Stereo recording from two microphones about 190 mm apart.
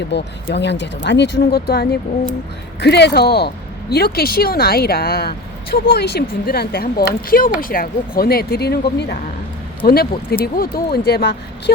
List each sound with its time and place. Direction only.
0.1 s speech: 65° left (ahead or behind)